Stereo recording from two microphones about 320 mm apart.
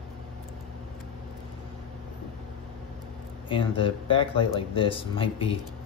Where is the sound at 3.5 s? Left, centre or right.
Centre.